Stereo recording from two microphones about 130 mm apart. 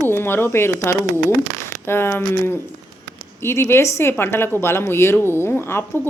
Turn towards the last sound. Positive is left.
turn(degrees=15)  # may be behind; listen again after turning